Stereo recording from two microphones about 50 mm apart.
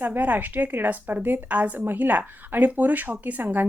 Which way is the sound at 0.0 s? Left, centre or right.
Right.